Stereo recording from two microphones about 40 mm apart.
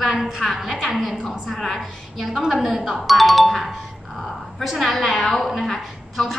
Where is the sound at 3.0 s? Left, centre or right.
Centre.